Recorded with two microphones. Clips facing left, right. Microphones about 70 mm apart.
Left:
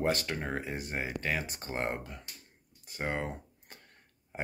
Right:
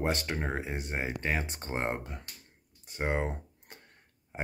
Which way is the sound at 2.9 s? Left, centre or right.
Right.